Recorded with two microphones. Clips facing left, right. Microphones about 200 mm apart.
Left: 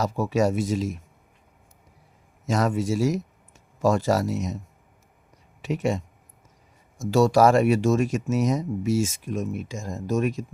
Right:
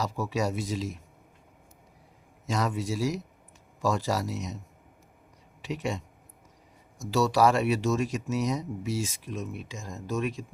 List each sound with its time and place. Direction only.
0.0 s speech: 50° left (ahead or behind)
2.5 s speech: 50° left (ahead or behind)
5.6 s speech: 50° left (ahead or behind)
7.0 s speech: 50° left (ahead or behind)